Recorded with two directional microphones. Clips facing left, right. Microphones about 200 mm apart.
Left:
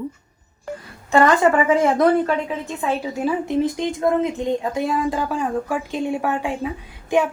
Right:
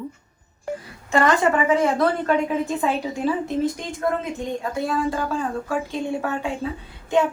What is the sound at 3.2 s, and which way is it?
Speech, 15° left (ahead or behind).